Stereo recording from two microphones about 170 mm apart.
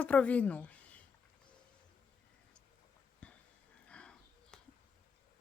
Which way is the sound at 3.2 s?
10° left (ahead or behind).